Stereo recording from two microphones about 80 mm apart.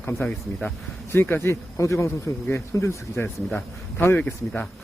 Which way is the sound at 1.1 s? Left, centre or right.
Left.